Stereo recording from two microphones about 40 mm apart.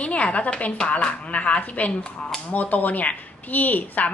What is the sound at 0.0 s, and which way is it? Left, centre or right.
A woman's voice, left.